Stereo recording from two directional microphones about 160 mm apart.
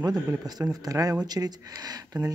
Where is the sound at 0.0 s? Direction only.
25° right (ahead or behind).